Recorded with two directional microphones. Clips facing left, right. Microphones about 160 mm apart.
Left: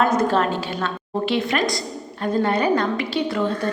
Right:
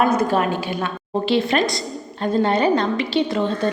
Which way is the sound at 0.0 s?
10° right (ahead or behind).